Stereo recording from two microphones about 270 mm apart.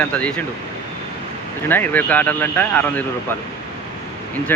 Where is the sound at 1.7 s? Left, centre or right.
Centre.